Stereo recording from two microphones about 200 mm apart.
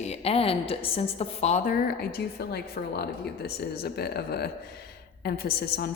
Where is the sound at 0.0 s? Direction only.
30° left (ahead or behind).